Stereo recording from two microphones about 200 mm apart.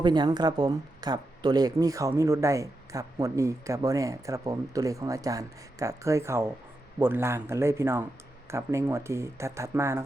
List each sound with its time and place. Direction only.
0.0 s speech: 20° right (ahead or behind)